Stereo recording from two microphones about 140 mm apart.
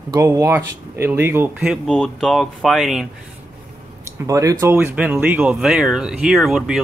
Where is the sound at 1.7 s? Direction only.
Centre (ahead or behind).